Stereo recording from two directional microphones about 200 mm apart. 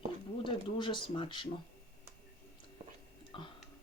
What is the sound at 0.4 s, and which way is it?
Speech, 25° left (ahead or behind).